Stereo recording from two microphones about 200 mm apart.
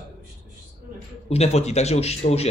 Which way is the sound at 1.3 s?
30° left (ahead or behind).